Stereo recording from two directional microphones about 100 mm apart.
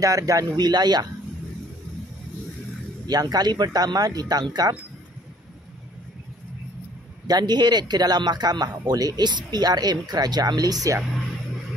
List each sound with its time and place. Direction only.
0.0 s speech: 35° right (ahead or behind)
3.1 s speech: 40° right (ahead or behind)
7.2 s speech: 45° right (ahead or behind)